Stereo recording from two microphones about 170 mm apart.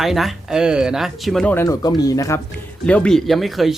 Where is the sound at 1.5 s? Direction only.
20° left (ahead or behind).